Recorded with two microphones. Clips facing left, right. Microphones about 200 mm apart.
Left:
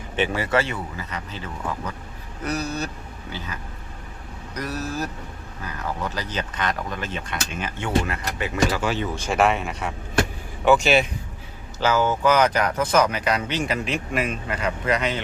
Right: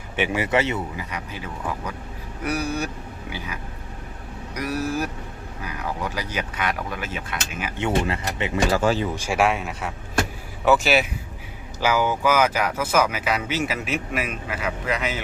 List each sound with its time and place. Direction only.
0.2 s speech: 15° right (ahead or behind)
7.8 s speech: 25° right (ahead or behind)
8.7 s speech: 40° right (ahead or behind)
9.1 s speech: 10° right (ahead or behind)